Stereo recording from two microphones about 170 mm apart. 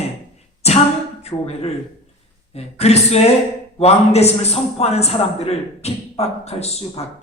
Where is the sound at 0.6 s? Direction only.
40° left (ahead or behind).